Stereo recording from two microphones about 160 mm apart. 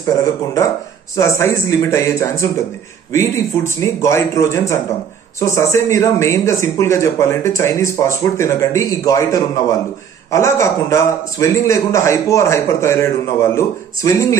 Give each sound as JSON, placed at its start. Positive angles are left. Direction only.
{"t": 0.0, "sound": "a man's voice", "side_deg": 20}